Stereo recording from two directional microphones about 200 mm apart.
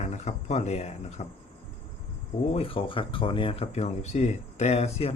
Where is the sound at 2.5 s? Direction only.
25° left (ahead or behind).